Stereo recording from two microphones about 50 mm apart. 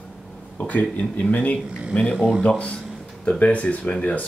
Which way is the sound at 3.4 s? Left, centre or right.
Left.